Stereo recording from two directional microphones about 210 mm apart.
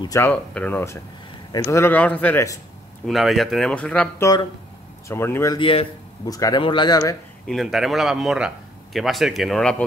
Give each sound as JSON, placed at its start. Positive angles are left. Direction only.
{"t": 0.0, "sound": "a man's voice", "side_deg": 15}
{"t": 3.1, "sound": "speech", "side_deg": 0}
{"t": 7.4, "sound": "speech", "side_deg": 0}